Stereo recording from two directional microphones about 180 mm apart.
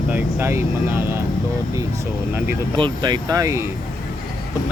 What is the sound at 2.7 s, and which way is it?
Speech, 25° right (ahead or behind).